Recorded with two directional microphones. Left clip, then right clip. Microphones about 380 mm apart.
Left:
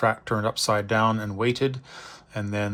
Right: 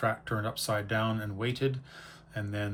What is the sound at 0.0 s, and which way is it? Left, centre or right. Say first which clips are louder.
Speech: left 8 dB; centre.